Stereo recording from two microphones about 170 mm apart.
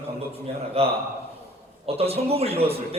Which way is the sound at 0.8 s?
35° right (ahead or behind).